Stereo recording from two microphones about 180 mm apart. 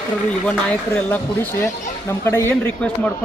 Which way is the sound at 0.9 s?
10° left (ahead or behind).